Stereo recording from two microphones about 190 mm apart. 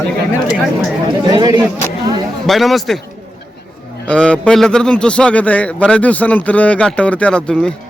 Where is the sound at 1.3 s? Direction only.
20° right (ahead or behind).